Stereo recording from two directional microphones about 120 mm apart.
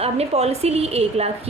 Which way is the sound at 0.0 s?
60° right (ahead or behind).